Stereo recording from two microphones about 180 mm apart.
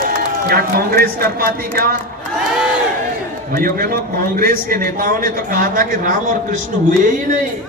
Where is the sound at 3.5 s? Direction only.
55° right (ahead or behind).